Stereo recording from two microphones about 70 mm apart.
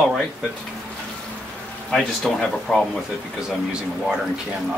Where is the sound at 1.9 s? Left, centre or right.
Centre.